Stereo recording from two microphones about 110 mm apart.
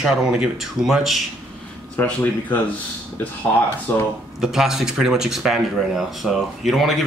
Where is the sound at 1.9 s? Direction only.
15° left (ahead or behind).